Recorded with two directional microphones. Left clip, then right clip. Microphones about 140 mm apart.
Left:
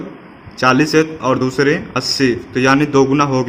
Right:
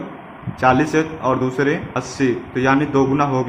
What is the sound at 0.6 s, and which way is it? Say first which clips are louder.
Speech: left 3 dB; 90° left.